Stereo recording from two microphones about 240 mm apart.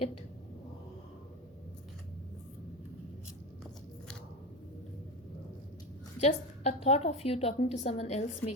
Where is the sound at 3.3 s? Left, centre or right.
Centre.